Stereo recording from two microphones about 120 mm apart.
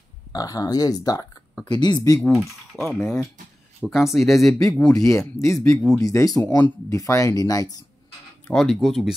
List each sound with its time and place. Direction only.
0.3 s speech: 30° left (ahead or behind)
2.3 s speech: centre (ahead or behind)
4.9 s speech: 25° left (ahead or behind)
8.5 s speech: centre (ahead or behind)